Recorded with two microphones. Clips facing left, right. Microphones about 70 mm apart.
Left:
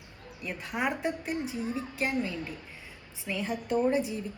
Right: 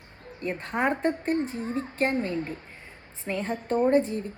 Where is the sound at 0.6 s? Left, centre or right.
Right.